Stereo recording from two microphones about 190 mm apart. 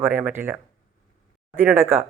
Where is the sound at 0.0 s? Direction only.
10° right (ahead or behind).